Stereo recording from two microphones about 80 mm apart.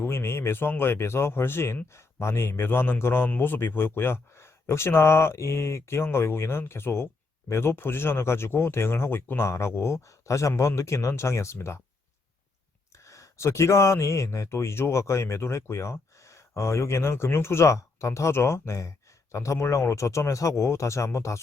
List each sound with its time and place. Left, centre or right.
0.0 s speech: left
12.9 s speech: left